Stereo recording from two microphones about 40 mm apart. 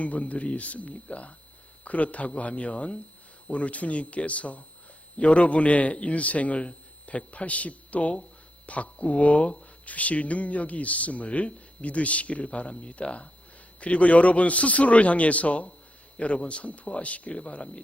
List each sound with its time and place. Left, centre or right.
0.0 s a man's voice: left